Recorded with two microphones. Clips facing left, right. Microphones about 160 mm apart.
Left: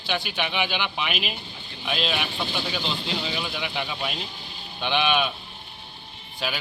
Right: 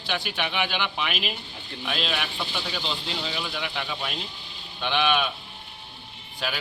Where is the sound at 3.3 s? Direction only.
10° left (ahead or behind).